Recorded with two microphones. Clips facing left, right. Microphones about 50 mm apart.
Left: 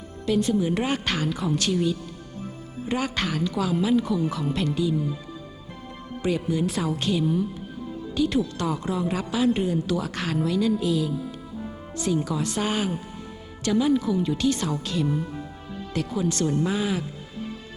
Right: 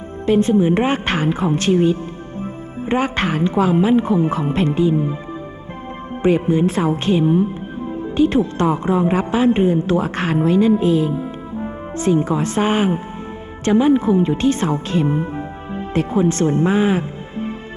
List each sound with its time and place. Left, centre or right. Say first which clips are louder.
0.3 s a woman's voice: right 8 dB; right
6.2 s a woman's voice: right 9 dB; right